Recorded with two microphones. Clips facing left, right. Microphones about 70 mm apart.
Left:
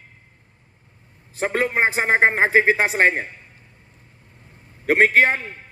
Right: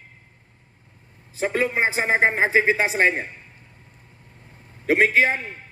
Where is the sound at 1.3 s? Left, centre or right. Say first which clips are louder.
Left 1 dB; left.